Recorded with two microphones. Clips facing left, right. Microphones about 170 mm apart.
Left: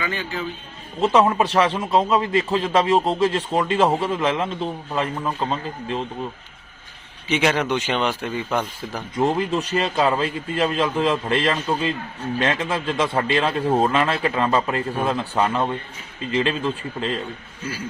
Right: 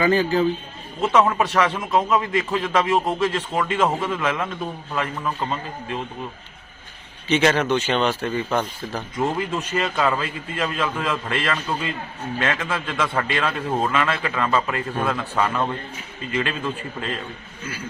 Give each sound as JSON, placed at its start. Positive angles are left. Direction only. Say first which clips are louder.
{"t": 0.0, "sound": "a man's voice", "louder": "right 9 dB", "side_deg": -35}
{"t": 1.1, "sound": "a man's voice", "louder": "left 1 dB", "side_deg": 30}
{"t": 7.3, "sound": "speech", "louder": "right 2 dB", "side_deg": 15}
{"t": 9.1, "sound": "a man's voice", "louder": "left 4 dB", "side_deg": 35}